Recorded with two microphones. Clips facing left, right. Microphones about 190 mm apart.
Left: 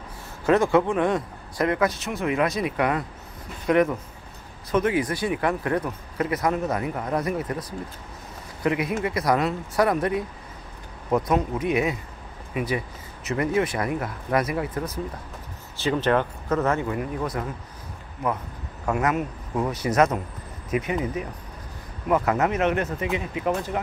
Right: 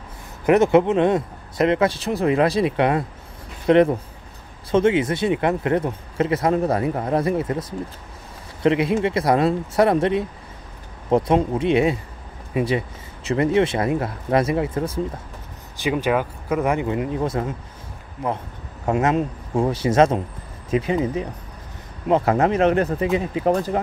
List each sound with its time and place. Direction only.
0.5 s speech: 20° right (ahead or behind)
8.6 s speech: 25° right (ahead or behind)
15.8 s speech: 10° right (ahead or behind); by 17.6 s 25° right (ahead or behind)
18.9 s speech: 25° right (ahead or behind)